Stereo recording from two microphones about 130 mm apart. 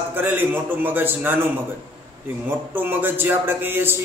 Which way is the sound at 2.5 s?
15° right (ahead or behind).